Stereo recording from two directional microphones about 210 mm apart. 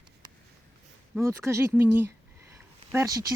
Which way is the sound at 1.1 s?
15° right (ahead or behind).